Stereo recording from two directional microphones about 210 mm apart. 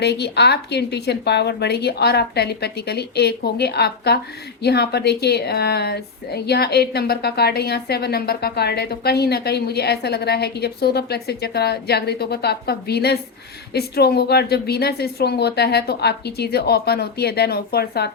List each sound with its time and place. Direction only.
0.0 s speech: 50° left (ahead or behind)